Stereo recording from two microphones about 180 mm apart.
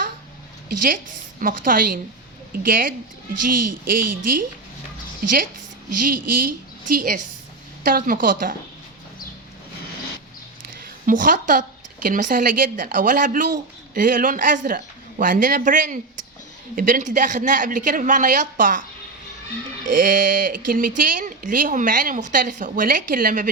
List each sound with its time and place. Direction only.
1.4 s speech: 50° right (ahead or behind)
6.0 s speech: 50° right (ahead or behind)
11.0 s a woman's voice: 50° right (ahead or behind)
19.9 s speech: 50° right (ahead or behind)